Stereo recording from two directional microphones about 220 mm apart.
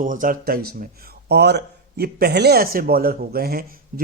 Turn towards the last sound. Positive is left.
turn(degrees=-45)  # may be behind; listen again after turning